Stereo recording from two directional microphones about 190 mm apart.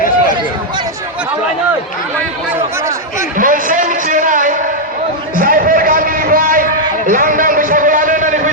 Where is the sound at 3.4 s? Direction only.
45° right (ahead or behind).